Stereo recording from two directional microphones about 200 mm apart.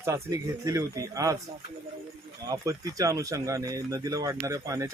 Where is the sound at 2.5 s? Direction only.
15° right (ahead or behind).